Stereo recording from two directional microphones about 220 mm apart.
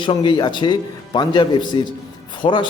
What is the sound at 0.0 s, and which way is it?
Speech, 20° left (ahead or behind).